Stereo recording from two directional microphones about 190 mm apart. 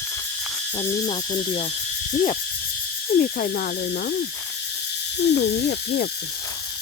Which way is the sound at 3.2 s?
50° left (ahead or behind).